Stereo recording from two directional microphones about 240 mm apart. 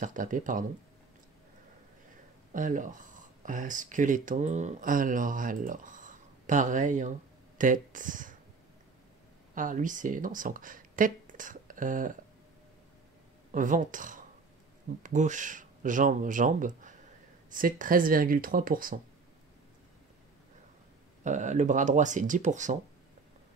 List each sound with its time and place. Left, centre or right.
0.0 s speech: right
2.5 s speech: right
9.6 s speech: right
13.5 s speech: right
21.2 s speech: right